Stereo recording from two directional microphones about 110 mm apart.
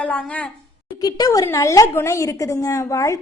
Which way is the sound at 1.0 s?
35° left (ahead or behind).